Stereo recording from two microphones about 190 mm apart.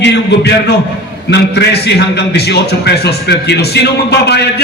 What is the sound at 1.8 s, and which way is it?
A man's voice, 60° left (ahead or behind).